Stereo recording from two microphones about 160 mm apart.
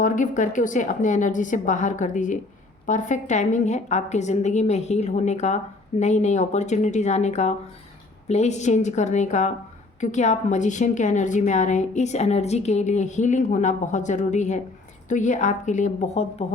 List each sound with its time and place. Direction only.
0.0 s a woman's voice: 50° left (ahead or behind)